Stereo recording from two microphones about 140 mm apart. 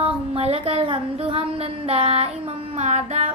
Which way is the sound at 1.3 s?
45° right (ahead or behind).